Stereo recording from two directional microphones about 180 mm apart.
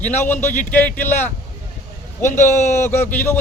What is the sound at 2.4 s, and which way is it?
Speech, 15° left (ahead or behind).